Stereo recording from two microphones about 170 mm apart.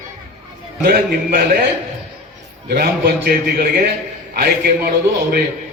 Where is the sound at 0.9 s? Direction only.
60° right (ahead or behind).